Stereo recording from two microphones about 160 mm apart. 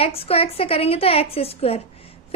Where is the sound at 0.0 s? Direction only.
35° left (ahead or behind).